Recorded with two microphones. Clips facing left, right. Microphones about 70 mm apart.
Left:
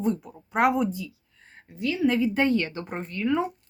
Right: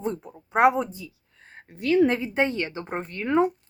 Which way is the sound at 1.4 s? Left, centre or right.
Right.